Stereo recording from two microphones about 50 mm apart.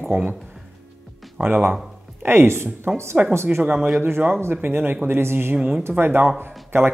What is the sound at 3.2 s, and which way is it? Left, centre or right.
Speech, right.